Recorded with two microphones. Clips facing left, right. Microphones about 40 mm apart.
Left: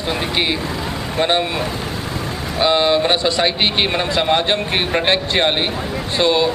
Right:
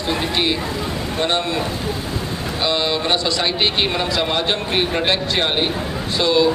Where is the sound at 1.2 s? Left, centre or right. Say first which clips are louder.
Left 4 dB; centre.